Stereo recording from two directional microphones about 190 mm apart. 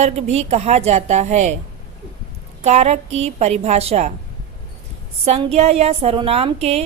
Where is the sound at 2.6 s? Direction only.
35° right (ahead or behind).